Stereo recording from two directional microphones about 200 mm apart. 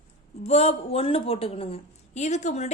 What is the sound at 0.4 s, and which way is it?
A woman's voice, 30° left (ahead or behind).